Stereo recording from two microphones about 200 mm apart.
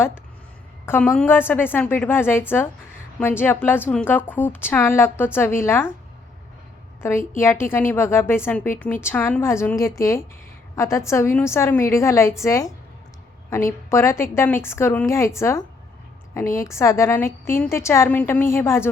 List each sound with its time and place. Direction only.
0.9 s a woman's voice: 10° left (ahead or behind)
7.0 s a woman's voice: 10° left (ahead or behind)